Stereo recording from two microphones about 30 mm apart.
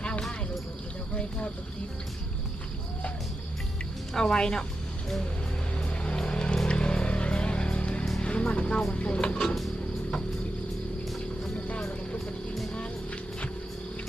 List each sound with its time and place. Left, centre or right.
0.0 s a sound: left
4.1 s speech: centre
5.7 s music: left
8.5 s speech: left